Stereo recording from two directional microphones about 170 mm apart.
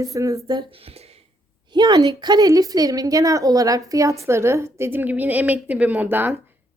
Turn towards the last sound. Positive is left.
turn(degrees=-10)  # may be behind; listen again after turning